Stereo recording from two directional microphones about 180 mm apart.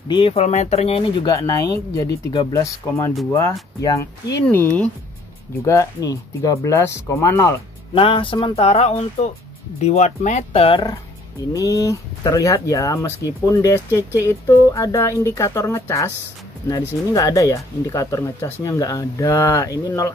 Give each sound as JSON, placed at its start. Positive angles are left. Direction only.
{"t": 0.1, "sound": "speech", "side_deg": 30}
{"t": 5.7, "sound": "speech", "side_deg": 20}
{"t": 7.9, "sound": "speech", "side_deg": 30}
{"t": 17.1, "sound": "speech", "side_deg": 20}